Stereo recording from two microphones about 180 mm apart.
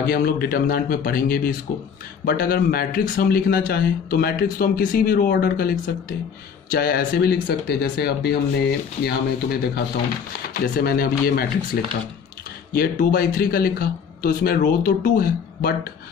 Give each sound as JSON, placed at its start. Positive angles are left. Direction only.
{"t": 0.1, "sound": "speech", "side_deg": 55}